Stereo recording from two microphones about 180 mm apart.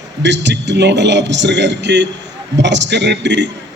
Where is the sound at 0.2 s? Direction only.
75° right (ahead or behind).